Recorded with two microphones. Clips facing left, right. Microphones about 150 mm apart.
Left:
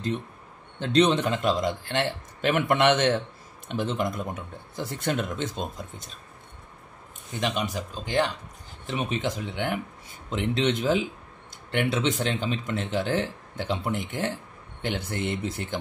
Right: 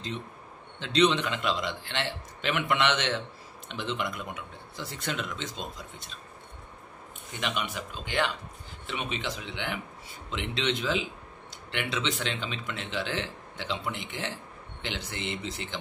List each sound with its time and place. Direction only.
0.7 s speech: 50° left (ahead or behind)
7.3 s speech: 40° left (ahead or behind)